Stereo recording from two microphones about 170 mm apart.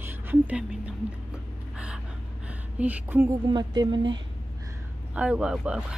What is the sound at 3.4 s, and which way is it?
Speech, 25° right (ahead or behind).